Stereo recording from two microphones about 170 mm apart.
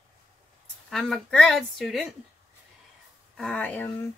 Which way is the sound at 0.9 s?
5° left (ahead or behind).